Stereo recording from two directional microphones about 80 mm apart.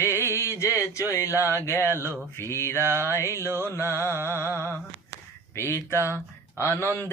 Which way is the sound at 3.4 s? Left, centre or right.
Right.